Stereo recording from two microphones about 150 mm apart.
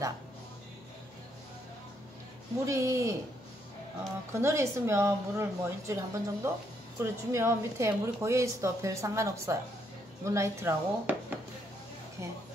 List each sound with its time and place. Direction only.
2.6 s a woman's voice: 20° right (ahead or behind)
4.3 s a woman's voice: 20° right (ahead or behind)